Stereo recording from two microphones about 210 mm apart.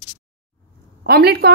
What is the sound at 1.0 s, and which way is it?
Speech, 50° right (ahead or behind).